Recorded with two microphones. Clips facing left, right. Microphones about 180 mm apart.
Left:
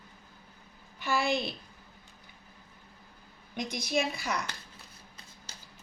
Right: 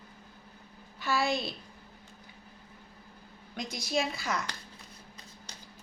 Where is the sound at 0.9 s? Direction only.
15° left (ahead or behind).